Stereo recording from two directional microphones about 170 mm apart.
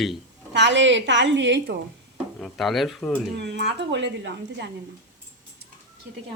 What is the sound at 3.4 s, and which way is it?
A woman's voice, 90° right.